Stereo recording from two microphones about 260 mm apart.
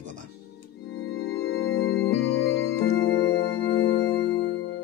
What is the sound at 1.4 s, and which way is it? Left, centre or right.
Music, left.